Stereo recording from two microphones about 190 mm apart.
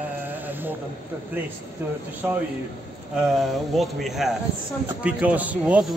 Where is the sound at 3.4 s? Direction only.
Centre (ahead or behind).